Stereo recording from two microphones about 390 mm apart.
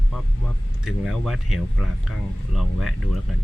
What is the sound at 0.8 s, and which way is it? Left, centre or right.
Speech, centre.